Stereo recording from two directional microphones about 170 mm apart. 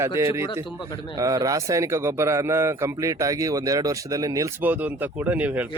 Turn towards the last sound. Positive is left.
turn(degrees=-10)  # may be behind; listen again after turning